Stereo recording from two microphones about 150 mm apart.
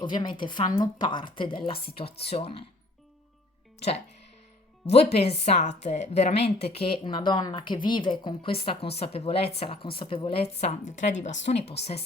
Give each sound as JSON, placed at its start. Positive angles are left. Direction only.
{"t": 0.0, "sound": "a woman's voice", "side_deg": 30}
{"t": 4.9, "sound": "a woman's voice", "side_deg": 45}